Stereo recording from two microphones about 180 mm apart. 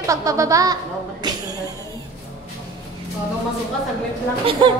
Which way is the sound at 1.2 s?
25° right (ahead or behind).